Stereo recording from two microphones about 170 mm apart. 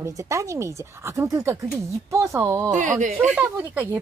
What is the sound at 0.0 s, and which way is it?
Speech, 20° right (ahead or behind).